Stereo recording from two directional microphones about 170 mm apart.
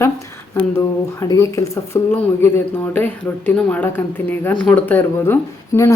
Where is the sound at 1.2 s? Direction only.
20° left (ahead or behind).